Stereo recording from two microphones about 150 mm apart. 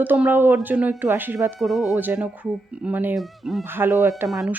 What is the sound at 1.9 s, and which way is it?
Speech, 10° right (ahead or behind).